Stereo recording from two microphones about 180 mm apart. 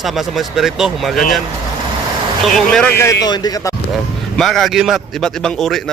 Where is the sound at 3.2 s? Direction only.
20° left (ahead or behind).